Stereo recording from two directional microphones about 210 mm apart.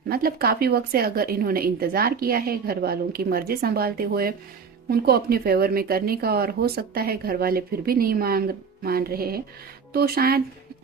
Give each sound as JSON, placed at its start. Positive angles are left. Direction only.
{"t": 0.1, "sound": "speech", "side_deg": -45}